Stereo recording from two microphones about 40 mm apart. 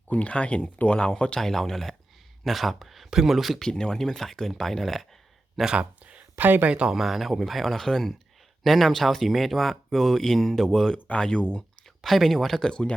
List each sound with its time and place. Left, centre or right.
0.1 s speech: left
1.4 s speech: centre
3.6 s speech: centre
6.0 s a sound: right
6.3 s speech: right
6.7 s speech: right
6.9 s speech: centre
10.9 s speech: left
12.0 s speech: centre
12.6 s speech: centre